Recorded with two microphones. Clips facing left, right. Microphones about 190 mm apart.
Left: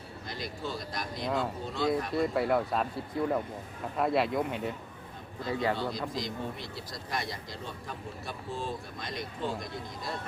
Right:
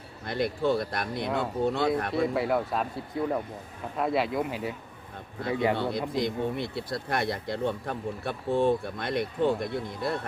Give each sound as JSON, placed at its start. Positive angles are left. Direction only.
{"t": 0.3, "sound": "speech", "side_deg": -60}
{"t": 2.2, "sound": "speech", "side_deg": 0}
{"t": 5.4, "sound": "speech", "side_deg": -60}